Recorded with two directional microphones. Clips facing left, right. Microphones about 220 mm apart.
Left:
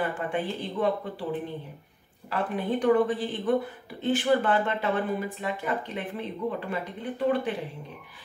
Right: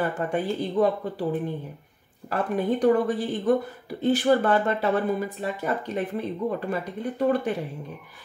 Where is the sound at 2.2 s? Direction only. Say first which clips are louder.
Right 4 dB; 40° right (ahead or behind).